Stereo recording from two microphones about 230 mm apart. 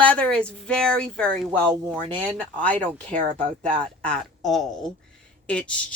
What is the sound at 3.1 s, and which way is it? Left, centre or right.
Speech, right.